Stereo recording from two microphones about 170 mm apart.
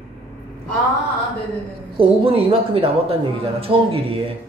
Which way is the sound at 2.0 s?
30° right (ahead or behind).